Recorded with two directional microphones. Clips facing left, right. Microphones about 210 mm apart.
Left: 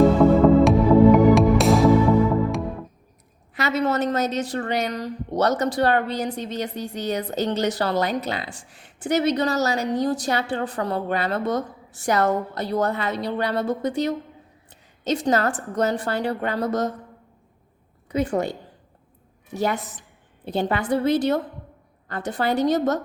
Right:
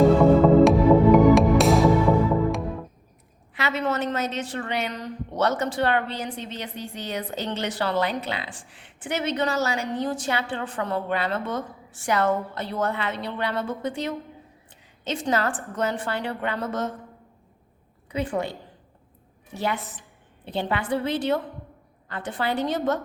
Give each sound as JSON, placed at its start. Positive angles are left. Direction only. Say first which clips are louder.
{"t": 0.6, "sound": "music", "louder": "left 1 dB", "side_deg": 0}
{"t": 3.5, "sound": "a woman's voice", "louder": "left 3 dB", "side_deg": 40}
{"t": 18.1, "sound": "a woman's voice", "louder": "left 4 dB", "side_deg": 45}
{"t": 19.5, "sound": "a woman's voice", "louder": "left 4 dB", "side_deg": 45}